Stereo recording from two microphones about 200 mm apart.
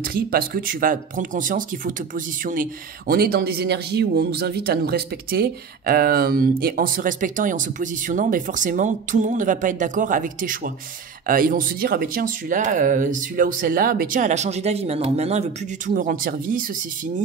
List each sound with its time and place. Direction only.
0.0 s speech: 50° right (ahead or behind)